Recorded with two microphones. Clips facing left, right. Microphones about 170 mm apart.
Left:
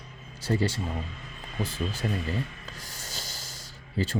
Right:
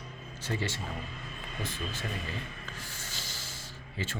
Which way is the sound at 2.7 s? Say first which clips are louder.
Left 1 dB; 40° left (ahead or behind).